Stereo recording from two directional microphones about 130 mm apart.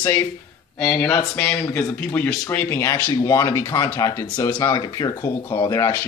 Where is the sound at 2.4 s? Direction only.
15° left (ahead or behind).